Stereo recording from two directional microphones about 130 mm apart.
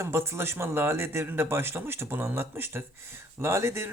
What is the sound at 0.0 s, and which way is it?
A man's voice, 20° right (ahead or behind).